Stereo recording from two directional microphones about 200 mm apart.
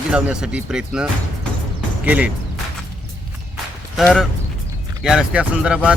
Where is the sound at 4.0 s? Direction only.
Centre (ahead or behind).